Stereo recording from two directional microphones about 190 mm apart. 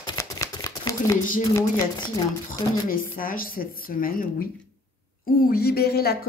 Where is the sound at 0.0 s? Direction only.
20° left (ahead or behind).